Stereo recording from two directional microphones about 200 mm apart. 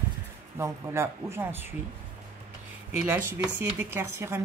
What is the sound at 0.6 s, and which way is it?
Speech, 15° right (ahead or behind).